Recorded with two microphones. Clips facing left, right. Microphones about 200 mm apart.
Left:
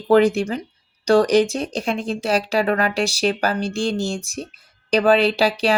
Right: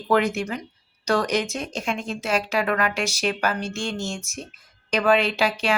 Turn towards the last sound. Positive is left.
turn(degrees=35)  # may be behind; listen again after turning